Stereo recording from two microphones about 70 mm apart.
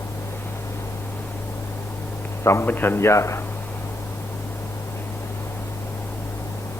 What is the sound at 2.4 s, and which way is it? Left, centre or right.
Speech, left.